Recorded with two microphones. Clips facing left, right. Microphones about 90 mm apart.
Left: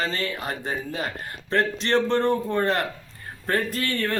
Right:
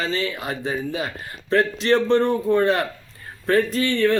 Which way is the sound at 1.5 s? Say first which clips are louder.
Right 4 dB; 35° left (ahead or behind).